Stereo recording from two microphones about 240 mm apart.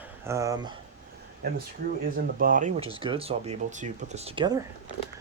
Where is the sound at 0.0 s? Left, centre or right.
Centre.